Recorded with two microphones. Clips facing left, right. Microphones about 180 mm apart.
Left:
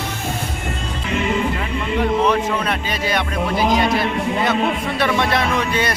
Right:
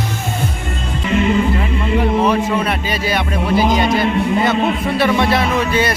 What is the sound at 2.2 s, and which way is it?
A man's voice, 10° right (ahead or behind).